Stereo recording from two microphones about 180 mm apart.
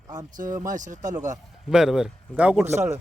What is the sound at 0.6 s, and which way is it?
Speech, 45° right (ahead or behind).